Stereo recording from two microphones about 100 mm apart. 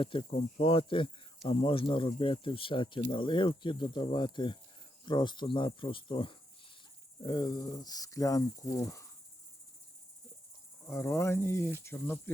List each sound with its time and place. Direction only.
0.0 s speech: 60° left (ahead or behind)
7.2 s speech: 45° left (ahead or behind)
10.8 s cricket: 25° left (ahead or behind)